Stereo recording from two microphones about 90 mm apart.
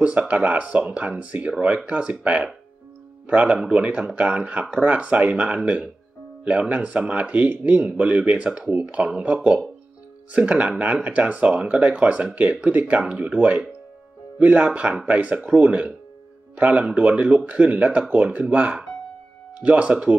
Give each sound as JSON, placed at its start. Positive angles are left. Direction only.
{"t": 0.0, "sound": "speech", "side_deg": -15}